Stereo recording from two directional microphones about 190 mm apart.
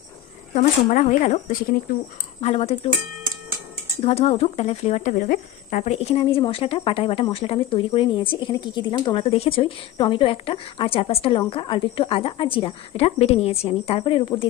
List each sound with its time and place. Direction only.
0.6 s speech: 40° left (ahead or behind)
2.4 s speech: 30° left (ahead or behind)
4.0 s speech: 30° left (ahead or behind)